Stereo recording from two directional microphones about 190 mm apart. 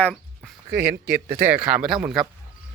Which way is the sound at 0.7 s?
55° right (ahead or behind).